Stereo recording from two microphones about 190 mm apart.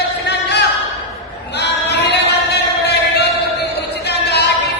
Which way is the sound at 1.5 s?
60° left (ahead or behind).